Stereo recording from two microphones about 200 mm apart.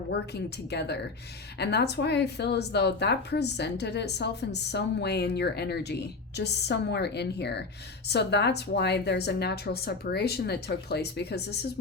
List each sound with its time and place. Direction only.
0.1 s speech: 55° left (ahead or behind)